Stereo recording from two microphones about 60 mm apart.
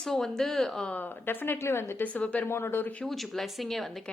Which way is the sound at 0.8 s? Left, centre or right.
Left.